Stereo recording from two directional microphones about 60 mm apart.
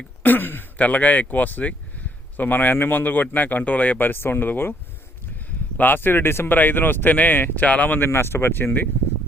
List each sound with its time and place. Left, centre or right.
0.2 s speech: left
5.7 s speech: left